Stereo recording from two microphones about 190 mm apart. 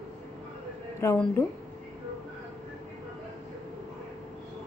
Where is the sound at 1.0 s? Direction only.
15° left (ahead or behind).